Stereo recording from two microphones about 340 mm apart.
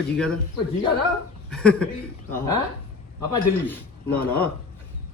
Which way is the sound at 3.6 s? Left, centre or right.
Centre.